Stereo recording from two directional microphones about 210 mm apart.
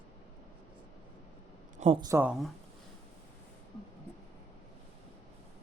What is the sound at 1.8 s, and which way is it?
Speech, 25° right (ahead or behind).